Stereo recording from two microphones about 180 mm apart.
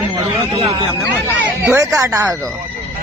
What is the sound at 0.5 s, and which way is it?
Speech, 35° right (ahead or behind).